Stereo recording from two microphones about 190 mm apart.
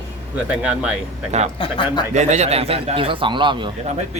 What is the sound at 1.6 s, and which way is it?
Speech, 25° left (ahead or behind).